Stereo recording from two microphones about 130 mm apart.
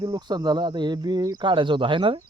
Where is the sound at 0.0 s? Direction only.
35° right (ahead or behind).